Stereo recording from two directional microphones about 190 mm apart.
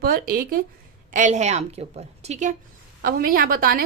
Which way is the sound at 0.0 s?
50° right (ahead or behind).